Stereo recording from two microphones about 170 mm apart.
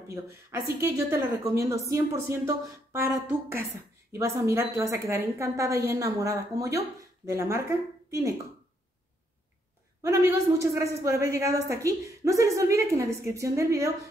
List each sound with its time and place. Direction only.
0.1 s a woman's voice: 20° right (ahead or behind)
10.0 s a woman's voice: 20° right (ahead or behind)